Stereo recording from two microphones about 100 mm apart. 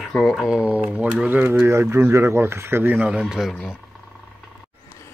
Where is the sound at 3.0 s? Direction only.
5° right (ahead or behind).